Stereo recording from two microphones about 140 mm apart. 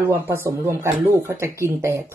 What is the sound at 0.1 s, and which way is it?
Speech, 15° right (ahead or behind).